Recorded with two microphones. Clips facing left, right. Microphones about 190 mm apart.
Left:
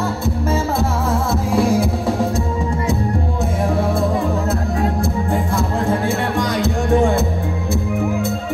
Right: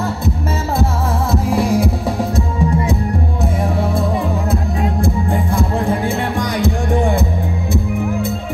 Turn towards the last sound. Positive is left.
turn(degrees=-15)  # may be behind; listen again after turning